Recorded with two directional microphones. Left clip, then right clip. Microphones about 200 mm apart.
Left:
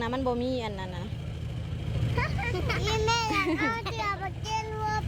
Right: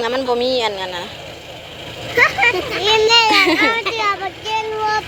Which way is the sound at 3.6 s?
10° right (ahead or behind).